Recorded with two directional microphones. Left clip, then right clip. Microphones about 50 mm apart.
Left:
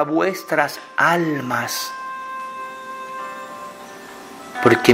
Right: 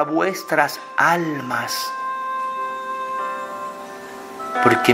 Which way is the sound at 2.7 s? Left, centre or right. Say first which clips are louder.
Right 6 dB; right.